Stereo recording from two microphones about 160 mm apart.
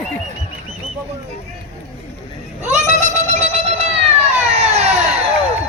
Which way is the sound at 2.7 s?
45° right (ahead or behind).